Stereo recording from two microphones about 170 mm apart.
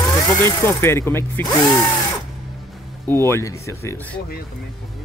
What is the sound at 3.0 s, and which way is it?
Speech, 15° left (ahead or behind).